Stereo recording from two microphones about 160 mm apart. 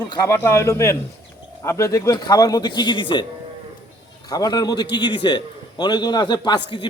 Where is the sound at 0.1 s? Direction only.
15° left (ahead or behind).